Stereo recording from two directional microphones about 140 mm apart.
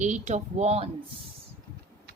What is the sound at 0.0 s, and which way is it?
Speech, 60° right (ahead or behind).